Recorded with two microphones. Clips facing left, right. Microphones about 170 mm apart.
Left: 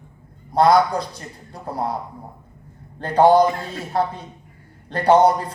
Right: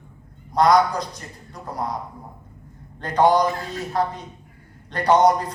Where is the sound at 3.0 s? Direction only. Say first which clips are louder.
Left 4 dB; 30° left (ahead or behind).